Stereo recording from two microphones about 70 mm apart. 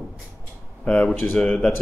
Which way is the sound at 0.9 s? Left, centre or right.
Centre.